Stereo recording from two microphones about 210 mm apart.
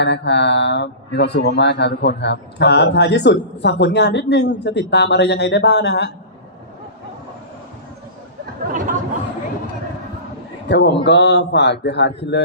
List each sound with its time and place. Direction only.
0.0 s speech: 55° left (ahead or behind)
8.6 s a sound: 40° right (ahead or behind)
10.7 s speech: 55° left (ahead or behind)